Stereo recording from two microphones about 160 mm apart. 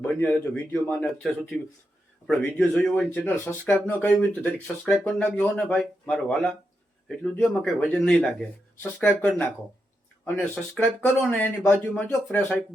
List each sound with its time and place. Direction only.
0.2 s speech: 10° left (ahead or behind)
10.5 s speech: 5° left (ahead or behind)